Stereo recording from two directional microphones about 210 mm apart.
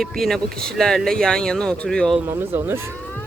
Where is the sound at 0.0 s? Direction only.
Centre (ahead or behind).